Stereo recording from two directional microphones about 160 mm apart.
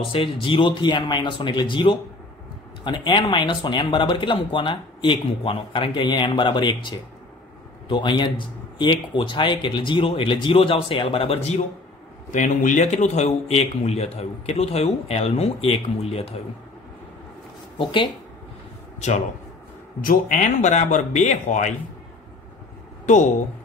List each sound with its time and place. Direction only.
0.1 s speech: 35° left (ahead or behind)
12.3 s speech: 55° left (ahead or behind)
17.7 s speech: 30° left (ahead or behind)
18.9 s a man's voice: 45° left (ahead or behind)
20.0 s speech: 55° left (ahead or behind)
23.0 s speech: 50° left (ahead or behind)